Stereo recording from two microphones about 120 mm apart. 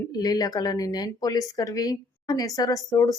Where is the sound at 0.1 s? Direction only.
35° left (ahead or behind).